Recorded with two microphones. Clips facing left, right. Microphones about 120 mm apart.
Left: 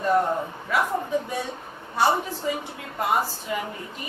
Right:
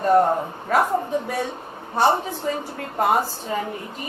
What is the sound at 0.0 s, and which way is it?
Speech, 45° right (ahead or behind).